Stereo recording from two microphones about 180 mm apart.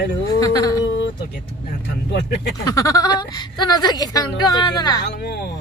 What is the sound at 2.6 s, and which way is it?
A woman's voice, 20° left (ahead or behind).